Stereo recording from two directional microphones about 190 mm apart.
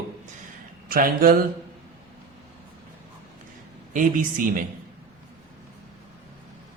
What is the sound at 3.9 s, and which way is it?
Speech, 45° right (ahead or behind).